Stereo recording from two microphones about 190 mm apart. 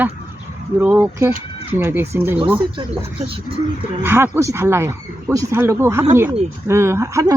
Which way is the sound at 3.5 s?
40° left (ahead or behind).